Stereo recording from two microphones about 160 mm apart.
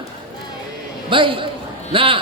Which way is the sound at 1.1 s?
30° right (ahead or behind).